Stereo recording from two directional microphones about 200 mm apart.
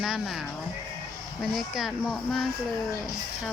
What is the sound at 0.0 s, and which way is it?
Speech, centre (ahead or behind).